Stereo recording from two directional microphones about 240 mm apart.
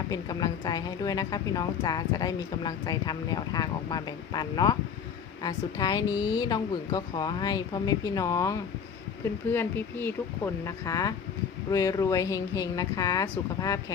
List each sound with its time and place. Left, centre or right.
0.1 s a woman's voice: centre